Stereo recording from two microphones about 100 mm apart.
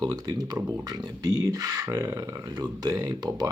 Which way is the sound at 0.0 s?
40° right (ahead or behind).